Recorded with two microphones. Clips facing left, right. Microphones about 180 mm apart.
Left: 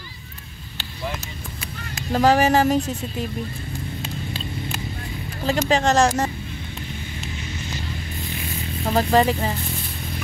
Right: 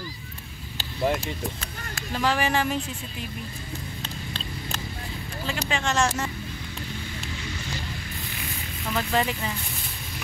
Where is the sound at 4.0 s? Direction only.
10° left (ahead or behind).